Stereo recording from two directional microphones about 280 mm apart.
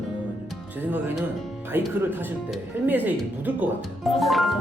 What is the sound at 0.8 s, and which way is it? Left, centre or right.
Speech, centre.